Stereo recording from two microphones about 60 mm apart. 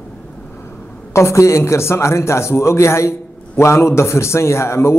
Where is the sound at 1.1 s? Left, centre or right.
Left.